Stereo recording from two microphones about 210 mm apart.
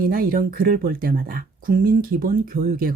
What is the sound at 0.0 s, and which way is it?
A woman's voice, 45° right (ahead or behind).